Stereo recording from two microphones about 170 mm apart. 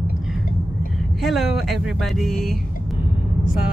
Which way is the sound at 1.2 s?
Centre (ahead or behind).